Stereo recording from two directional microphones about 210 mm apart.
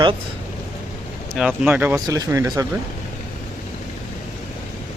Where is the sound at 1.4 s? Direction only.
5° right (ahead or behind).